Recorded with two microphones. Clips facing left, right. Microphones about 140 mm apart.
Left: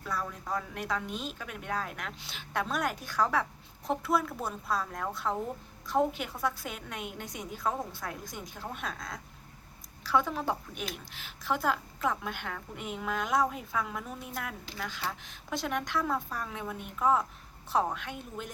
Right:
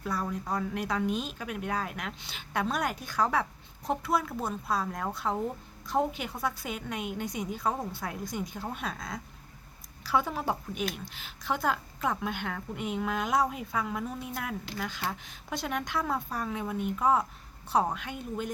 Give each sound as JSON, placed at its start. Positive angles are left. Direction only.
{"t": 0.0, "sound": "speech", "side_deg": -20}
{"t": 0.7, "sound": "a woman's voice", "side_deg": 0}